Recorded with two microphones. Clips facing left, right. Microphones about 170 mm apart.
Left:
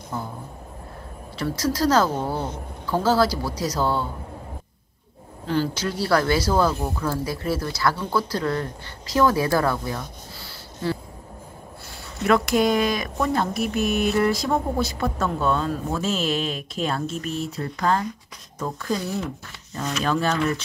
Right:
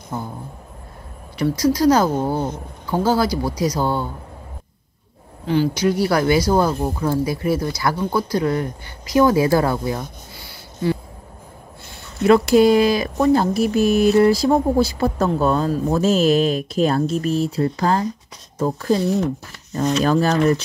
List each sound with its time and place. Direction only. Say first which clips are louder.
1.4 s speech: right 6 dB; 20° right (ahead or behind)
5.5 s speech: right 6 dB; 15° right (ahead or behind)
12.3 s speech: right 7 dB; 30° right (ahead or behind)